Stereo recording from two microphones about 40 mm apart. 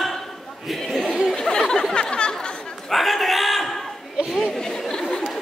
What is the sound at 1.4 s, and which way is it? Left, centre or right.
Chatter, centre.